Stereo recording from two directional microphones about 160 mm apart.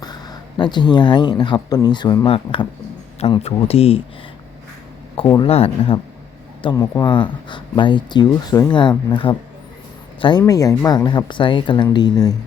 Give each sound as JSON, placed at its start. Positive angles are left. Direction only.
{"t": 0.0, "sound": "speech", "side_deg": 25}
{"t": 5.4, "sound": "speech", "side_deg": 40}